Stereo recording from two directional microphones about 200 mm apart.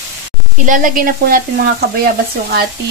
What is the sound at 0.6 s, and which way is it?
Frying, 40° right (ahead or behind).